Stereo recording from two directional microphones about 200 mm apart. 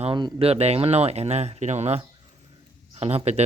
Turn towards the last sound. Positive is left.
turn(degrees=-30)  # may be behind; listen again after turning